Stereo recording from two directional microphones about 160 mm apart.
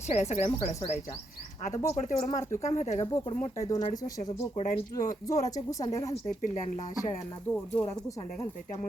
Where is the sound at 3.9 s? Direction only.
20° left (ahead or behind).